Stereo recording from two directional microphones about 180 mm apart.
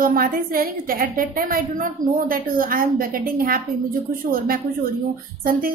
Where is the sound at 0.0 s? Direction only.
55° right (ahead or behind).